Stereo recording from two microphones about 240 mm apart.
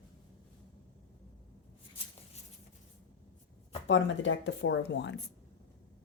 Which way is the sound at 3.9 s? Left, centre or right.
Left.